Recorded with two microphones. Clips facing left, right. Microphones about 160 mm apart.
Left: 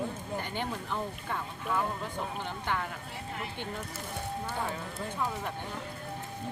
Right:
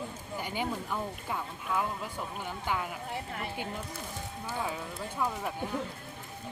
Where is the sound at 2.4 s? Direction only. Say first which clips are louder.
Right 3 dB; 10° right (ahead or behind).